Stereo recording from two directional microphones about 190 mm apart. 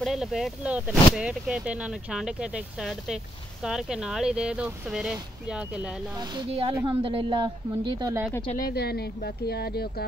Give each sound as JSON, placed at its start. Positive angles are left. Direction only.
{"t": 0.0, "sound": "speech", "side_deg": 0}
{"t": 6.1, "sound": "speech", "side_deg": -25}
{"t": 8.5, "sound": "speech", "side_deg": 55}